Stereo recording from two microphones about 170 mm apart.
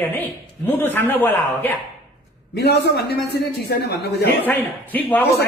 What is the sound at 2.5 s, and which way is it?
A man's voice, 75° left (ahead or behind).